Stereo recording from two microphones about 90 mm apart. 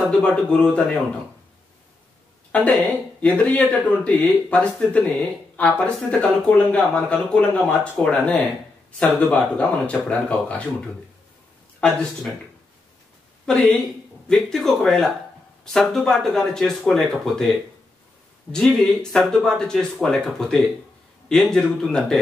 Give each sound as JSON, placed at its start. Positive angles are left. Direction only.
{"t": 0.1, "sound": "speech", "side_deg": 10}
{"t": 2.5, "sound": "speech", "side_deg": 20}
{"t": 13.5, "sound": "speech", "side_deg": 10}